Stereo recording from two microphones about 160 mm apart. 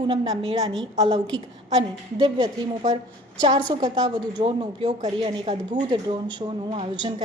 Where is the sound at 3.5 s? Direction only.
30° right (ahead or behind).